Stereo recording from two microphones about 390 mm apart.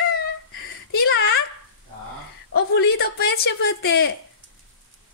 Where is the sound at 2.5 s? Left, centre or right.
Left.